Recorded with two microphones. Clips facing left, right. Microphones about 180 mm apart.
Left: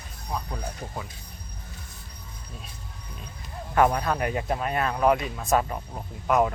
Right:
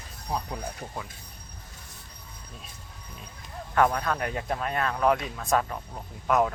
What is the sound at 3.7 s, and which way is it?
Speech, 10° left (ahead or behind).